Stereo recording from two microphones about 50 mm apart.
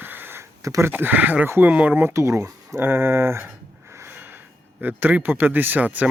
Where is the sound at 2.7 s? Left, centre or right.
Right.